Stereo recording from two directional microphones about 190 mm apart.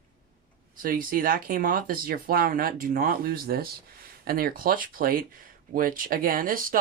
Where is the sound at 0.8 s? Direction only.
50° right (ahead or behind).